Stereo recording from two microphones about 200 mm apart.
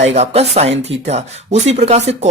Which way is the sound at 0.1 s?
35° right (ahead or behind).